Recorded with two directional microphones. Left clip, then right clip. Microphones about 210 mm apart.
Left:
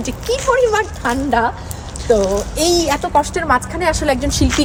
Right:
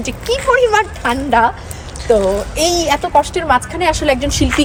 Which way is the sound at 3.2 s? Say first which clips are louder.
Right 2 dB; 60° right (ahead or behind).